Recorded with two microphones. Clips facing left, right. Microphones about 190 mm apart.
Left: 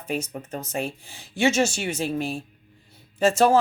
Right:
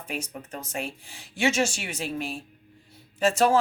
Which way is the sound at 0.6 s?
25° left (ahead or behind).